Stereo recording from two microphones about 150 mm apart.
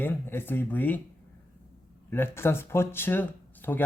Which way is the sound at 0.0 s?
15° left (ahead or behind).